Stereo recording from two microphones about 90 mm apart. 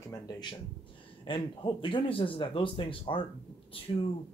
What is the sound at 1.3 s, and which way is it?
Speech, 70° left (ahead or behind).